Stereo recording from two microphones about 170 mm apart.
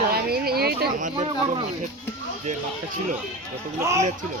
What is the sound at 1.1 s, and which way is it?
Speech, 30° right (ahead or behind).